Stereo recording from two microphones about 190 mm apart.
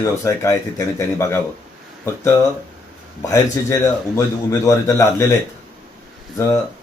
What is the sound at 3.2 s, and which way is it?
Speech, 15° left (ahead or behind).